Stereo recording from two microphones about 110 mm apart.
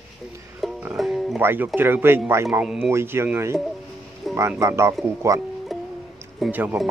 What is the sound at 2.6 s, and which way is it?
Speech, 5° right (ahead or behind).